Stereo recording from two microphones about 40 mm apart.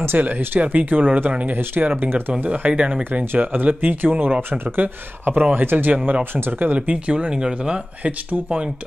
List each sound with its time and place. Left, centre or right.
0.1 s speech: right
2.4 s speech: right
3.2 s speech: right
6.6 s speech: right
7.1 s speech: right
8.0 s speech: right